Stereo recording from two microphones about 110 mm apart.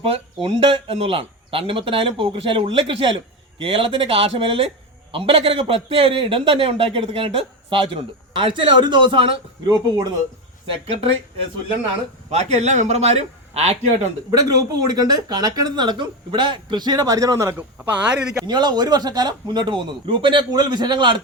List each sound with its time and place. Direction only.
0.4 s a man's voice: 55° right (ahead or behind)
10.8 s a man's voice: 65° right (ahead or behind)
12.3 s a man's voice: 90° right; by 13.7 s 75° right (ahead or behind)
14.3 s speech: 35° right (ahead or behind); by 18.4 s 5° right (ahead or behind)
18.4 s speech: 40° right (ahead or behind)